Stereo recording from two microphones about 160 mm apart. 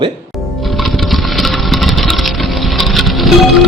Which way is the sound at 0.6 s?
Centre (ahead or behind).